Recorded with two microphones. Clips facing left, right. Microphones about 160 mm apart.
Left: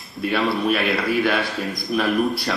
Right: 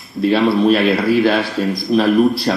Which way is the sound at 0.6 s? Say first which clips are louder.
Right 8 dB; 30° right (ahead or behind).